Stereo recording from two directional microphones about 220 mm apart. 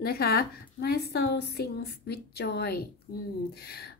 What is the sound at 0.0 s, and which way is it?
A woman's voice, 45° left (ahead or behind).